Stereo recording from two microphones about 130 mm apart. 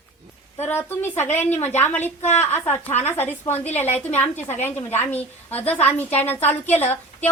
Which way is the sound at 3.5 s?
60° left (ahead or behind).